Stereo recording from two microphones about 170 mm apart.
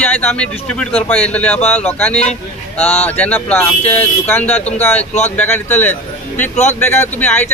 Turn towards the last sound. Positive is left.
turn(degrees=10)  # may be behind; listen again after turning